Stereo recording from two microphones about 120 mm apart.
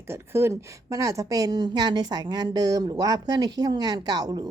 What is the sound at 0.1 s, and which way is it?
A woman's voice, 20° right (ahead or behind).